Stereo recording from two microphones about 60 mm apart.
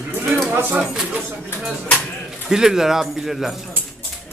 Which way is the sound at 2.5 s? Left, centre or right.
Centre.